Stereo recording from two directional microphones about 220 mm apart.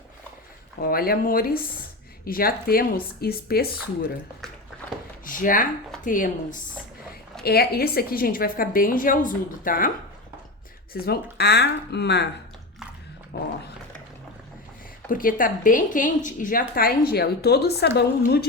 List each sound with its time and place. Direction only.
0.8 s a woman's voice: 45° left (ahead or behind)
5.2 s a sound: 40° left (ahead or behind)
6.1 s a woman's voice: 35° left (ahead or behind)
10.9 s a woman's voice: 45° left (ahead or behind)
13.3 s dog: 50° left (ahead or behind)
15.1 s a woman's voice: 40° left (ahead or behind)